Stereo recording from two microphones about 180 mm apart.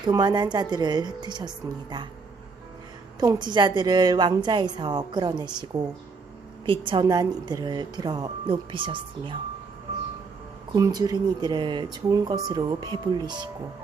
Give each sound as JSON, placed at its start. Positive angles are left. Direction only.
{"t": 0.0, "sound": "speech", "side_deg": -25}
{"t": 3.3, "sound": "speech", "side_deg": -25}
{"t": 10.7, "sound": "speech", "side_deg": -20}